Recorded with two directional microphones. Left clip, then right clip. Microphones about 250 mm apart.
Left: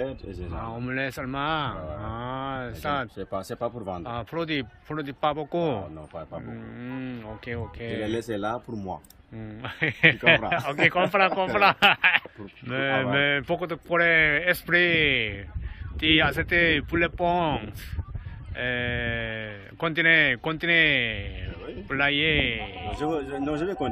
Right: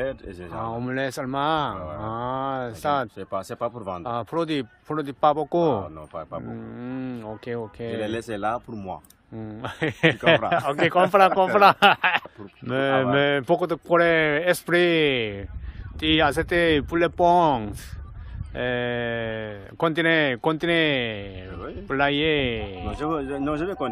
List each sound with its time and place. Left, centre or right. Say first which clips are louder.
0.5 s speech: right 5 dB; right
3.2 s speech: right 2 dB; centre
4.0 s speech: right 7 dB; right
8.1 s speech: right 1 dB; centre
9.4 s speech: right 1 dB; right